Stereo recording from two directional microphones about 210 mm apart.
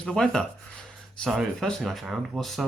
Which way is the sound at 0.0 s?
5° left (ahead or behind).